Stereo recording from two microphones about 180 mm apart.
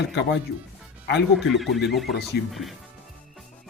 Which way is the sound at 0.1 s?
75° left (ahead or behind).